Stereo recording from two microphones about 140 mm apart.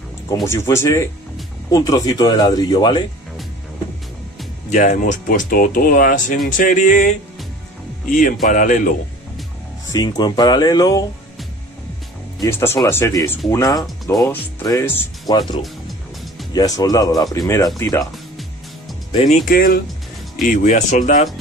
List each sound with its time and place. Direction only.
0.5 s speech: 20° left (ahead or behind)
4.6 s speech: 55° left (ahead or behind)
5.5 s speech: 90° left; by 7.2 s 70° left (ahead or behind)
8.5 s speech: 70° left (ahead or behind)
9.9 s speech: 30° left (ahead or behind)
12.4 s speech: 20° left (ahead or behind)
19.4 s speech: 90° left
20.4 s speech: 65° left (ahead or behind)